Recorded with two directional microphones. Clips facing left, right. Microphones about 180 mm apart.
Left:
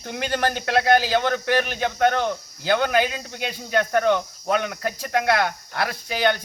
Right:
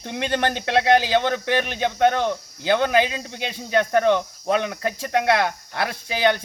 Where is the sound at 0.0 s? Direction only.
25° right (ahead or behind).